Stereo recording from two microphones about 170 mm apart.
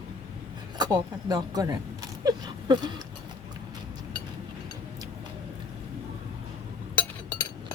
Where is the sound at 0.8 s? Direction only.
20° right (ahead or behind).